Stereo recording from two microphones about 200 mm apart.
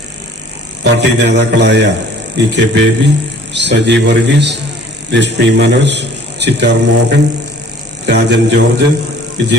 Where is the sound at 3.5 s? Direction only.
60° right (ahead or behind).